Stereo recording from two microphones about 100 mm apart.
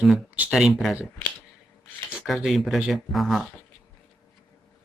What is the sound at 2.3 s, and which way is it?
Speech, centre (ahead or behind).